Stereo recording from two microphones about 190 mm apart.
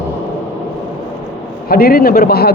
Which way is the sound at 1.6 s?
50° left (ahead or behind).